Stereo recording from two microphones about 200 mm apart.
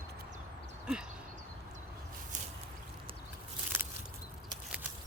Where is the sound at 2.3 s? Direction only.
40° right (ahead or behind).